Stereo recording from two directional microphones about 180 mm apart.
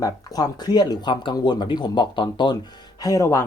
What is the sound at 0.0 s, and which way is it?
Speech, 20° left (ahead or behind).